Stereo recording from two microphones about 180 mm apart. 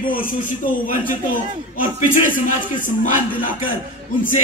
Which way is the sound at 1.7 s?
45° left (ahead or behind).